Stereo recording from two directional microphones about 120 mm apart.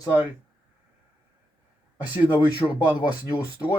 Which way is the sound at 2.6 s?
25° left (ahead or behind).